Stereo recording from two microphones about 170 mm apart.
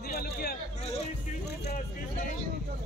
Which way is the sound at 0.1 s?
65° left (ahead or behind).